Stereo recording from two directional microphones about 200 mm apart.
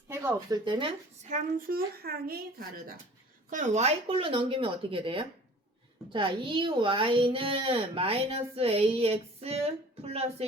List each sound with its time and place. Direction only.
0.1 s speech: 10° right (ahead or behind)
0.6 s speech: 25° right (ahead or behind)
1.3 s speech: 45° right (ahead or behind)
3.5 s speech: 35° right (ahead or behind)